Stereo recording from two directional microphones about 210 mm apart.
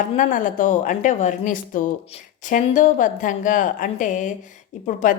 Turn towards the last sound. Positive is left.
turn(degrees=35)  # may be behind; listen again after turning